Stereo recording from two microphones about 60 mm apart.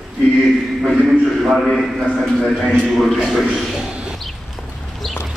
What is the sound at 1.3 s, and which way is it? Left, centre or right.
A man's voice, centre.